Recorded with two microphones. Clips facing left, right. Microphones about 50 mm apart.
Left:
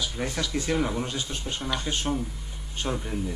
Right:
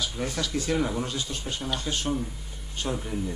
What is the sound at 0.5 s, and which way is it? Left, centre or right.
Speech, centre.